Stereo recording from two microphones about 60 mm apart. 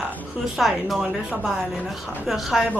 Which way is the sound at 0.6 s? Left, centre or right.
Centre.